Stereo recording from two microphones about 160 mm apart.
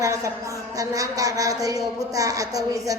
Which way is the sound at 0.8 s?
20° right (ahead or behind).